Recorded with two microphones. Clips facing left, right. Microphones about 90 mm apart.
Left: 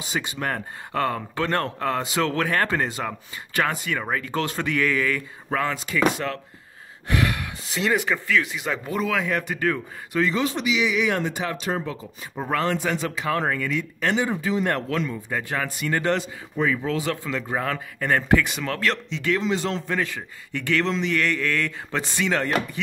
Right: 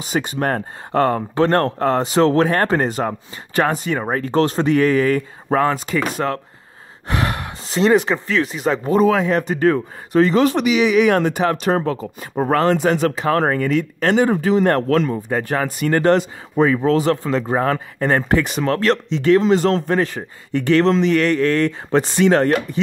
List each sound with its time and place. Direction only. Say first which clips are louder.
0.1 s speech: right 7 dB; 45° right (ahead or behind)
10.3 s speech: right 8 dB; 60° right (ahead or behind)
12.7 s speech: right 9 dB; 60° right (ahead or behind)
13.1 s speech: right 7 dB; 45° right (ahead or behind)